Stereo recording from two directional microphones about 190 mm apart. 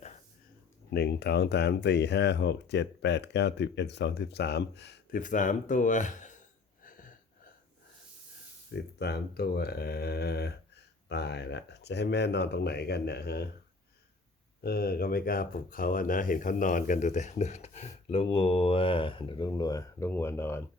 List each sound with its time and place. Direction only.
0.9 s speech: 60° left (ahead or behind)
5.1 s speech: 40° left (ahead or behind)
8.7 s speech: 60° left (ahead or behind)
14.6 s speech: 55° left (ahead or behind); by 20.7 s 10° left (ahead or behind)